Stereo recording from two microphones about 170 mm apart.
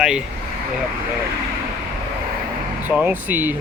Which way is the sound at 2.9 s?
10° right (ahead or behind).